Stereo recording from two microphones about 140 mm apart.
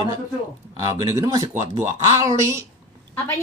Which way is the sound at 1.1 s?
25° right (ahead or behind).